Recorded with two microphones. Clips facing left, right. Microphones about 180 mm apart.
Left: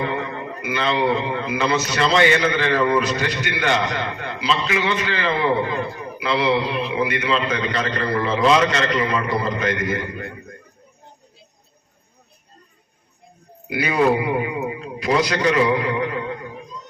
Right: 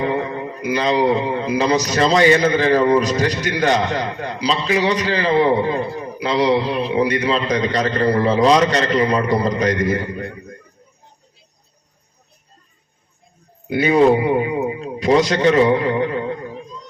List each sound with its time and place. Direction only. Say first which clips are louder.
0.0 s a man's voice: right 4 dB; 35° right (ahead or behind)
13.7 s a man's voice: right 5 dB; 25° right (ahead or behind)
15.6 s a sound: right 4 dB; 40° right (ahead or behind)